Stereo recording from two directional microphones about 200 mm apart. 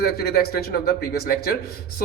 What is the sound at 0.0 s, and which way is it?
Speech, 50° left (ahead or behind).